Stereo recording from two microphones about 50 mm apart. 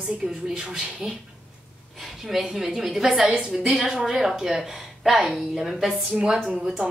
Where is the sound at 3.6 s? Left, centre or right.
Centre.